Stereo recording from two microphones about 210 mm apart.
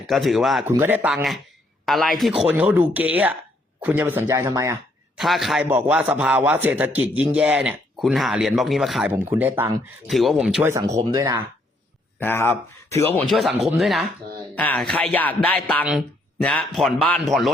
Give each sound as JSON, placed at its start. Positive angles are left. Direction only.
{"t": 0.1, "sound": "a man's voice", "side_deg": 0}
{"t": 5.1, "sound": "a man's voice", "side_deg": 0}
{"t": 10.7, "sound": "a man's voice", "side_deg": -15}
{"t": 12.2, "sound": "speech", "side_deg": 10}